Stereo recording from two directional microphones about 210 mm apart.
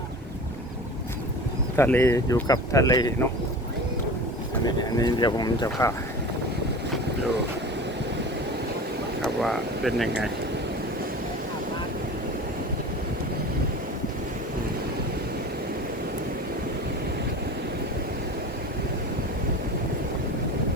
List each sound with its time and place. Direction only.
1.7 s speech: 10° left (ahead or behind)
4.6 s speech: 20° left (ahead or behind)
9.2 s speech: centre (ahead or behind)